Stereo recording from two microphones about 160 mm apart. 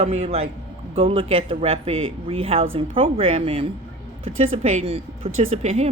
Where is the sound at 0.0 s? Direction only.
40° right (ahead or behind).